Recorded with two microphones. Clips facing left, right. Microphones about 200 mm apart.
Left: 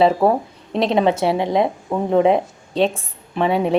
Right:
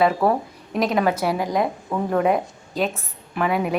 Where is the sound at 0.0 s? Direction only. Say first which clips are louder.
Left 4 dB; 25° left (ahead or behind).